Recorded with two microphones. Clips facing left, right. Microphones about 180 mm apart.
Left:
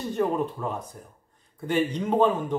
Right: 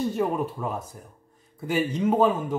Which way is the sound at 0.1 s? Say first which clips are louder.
Left 1 dB; 10° right (ahead or behind).